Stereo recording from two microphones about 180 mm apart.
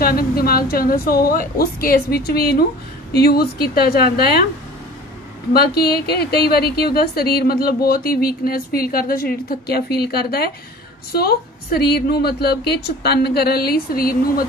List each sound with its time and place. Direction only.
0.0 s a woman's voice: 55° left (ahead or behind)
5.5 s a woman's voice: 60° left (ahead or behind)